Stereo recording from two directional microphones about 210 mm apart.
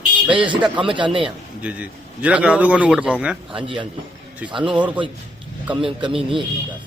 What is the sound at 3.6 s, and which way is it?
Speech, 25° right (ahead or behind).